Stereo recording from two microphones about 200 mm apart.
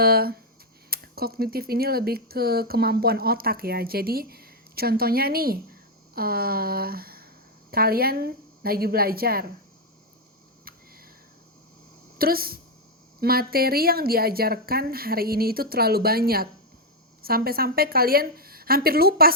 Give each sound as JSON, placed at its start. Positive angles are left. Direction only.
{"t": 0.0, "sound": "speech", "side_deg": -50}
{"t": 12.1, "sound": "speech", "side_deg": -45}